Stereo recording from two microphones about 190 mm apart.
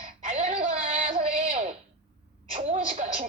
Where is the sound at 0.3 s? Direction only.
40° right (ahead or behind).